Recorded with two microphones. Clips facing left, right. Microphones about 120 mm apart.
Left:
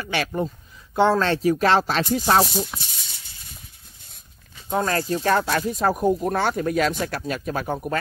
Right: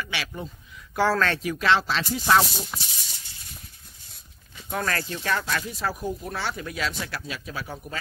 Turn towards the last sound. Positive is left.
turn(degrees=55)  # may be behind; listen again after turning